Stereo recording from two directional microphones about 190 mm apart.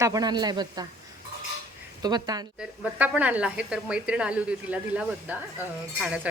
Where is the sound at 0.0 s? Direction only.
20° right (ahead or behind).